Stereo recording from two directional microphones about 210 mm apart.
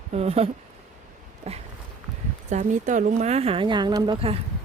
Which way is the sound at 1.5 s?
30° right (ahead or behind).